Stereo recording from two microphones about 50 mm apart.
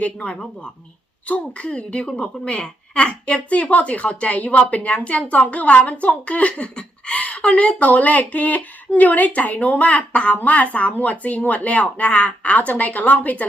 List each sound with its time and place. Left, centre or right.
0.0 s a woman's voice: left